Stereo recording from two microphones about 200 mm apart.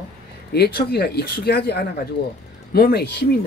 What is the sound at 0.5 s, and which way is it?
Speech, 55° left (ahead or behind).